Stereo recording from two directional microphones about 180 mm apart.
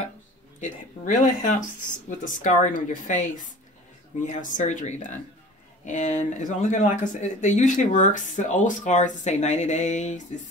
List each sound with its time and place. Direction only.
0.6 s speech: 45° left (ahead or behind)